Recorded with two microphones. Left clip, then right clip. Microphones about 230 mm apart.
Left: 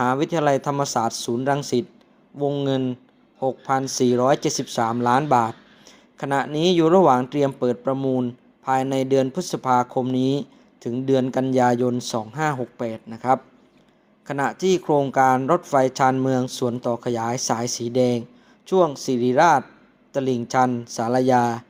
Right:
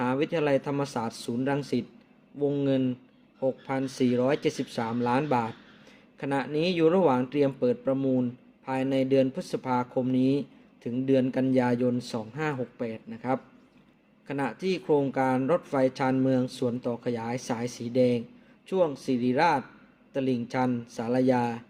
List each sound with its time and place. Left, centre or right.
0.0 s speech: left